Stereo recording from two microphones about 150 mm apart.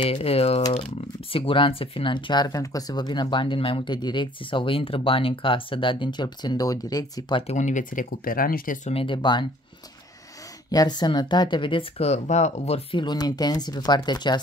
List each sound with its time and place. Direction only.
0.0 s speech: 40° left (ahead or behind)
7.4 s speech: 55° left (ahead or behind); by 8.7 s 70° left (ahead or behind)
8.8 s speech: 35° left (ahead or behind)
10.7 s speech: 25° left (ahead or behind); by 13.0 s 45° left (ahead or behind)
13.0 s speech: 25° left (ahead or behind)